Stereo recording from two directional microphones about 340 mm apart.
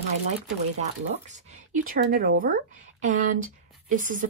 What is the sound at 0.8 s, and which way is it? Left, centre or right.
Speech, right.